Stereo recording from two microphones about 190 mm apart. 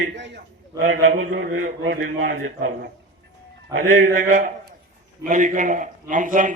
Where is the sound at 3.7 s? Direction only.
90° right.